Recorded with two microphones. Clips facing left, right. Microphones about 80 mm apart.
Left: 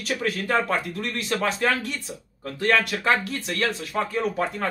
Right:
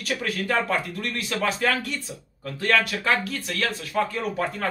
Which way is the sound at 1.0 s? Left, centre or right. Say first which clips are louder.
Left 1 dB; centre.